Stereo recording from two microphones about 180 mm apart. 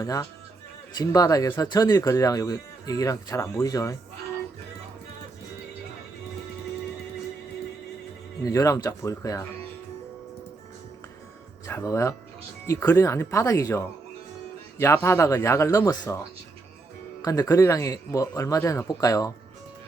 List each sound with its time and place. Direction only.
0.0 s speech: 20° left (ahead or behind)
8.5 s speech: 20° left (ahead or behind)
11.6 s speech: 20° left (ahead or behind)
17.2 s speech: 20° left (ahead or behind)